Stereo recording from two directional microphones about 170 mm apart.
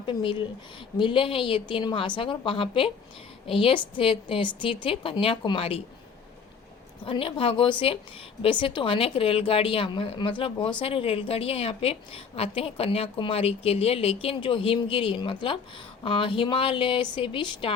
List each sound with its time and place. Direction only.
0.0 s a woman's voice: 30° left (ahead or behind)
7.0 s a woman's voice: 30° left (ahead or behind)